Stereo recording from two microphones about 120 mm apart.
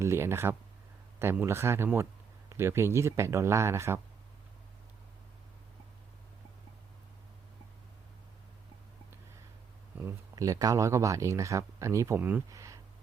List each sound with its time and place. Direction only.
0.0 s speech: 20° right (ahead or behind)
10.0 s speech: 25° right (ahead or behind)
12.5 s a sound: 25° right (ahead or behind)